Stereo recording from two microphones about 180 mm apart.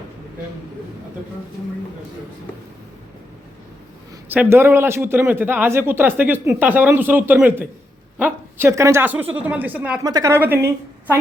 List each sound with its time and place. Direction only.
4.3 s a man's voice: 10° right (ahead or behind)
10.0 s a man's voice: 20° right (ahead or behind)